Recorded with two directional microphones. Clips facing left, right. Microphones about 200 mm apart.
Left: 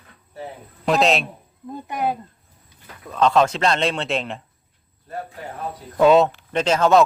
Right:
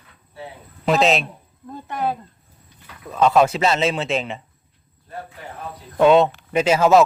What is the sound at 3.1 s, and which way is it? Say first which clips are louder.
Speech: right 1 dB; 5° right (ahead or behind).